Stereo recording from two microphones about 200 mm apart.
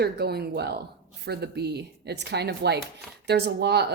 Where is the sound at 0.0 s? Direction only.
55° right (ahead or behind).